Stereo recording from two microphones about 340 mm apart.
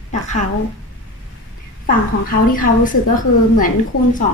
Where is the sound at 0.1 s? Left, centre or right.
Left.